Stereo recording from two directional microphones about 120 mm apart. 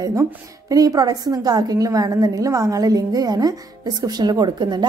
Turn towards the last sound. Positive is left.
turn(degrees=-40)  # may be behind; listen again after turning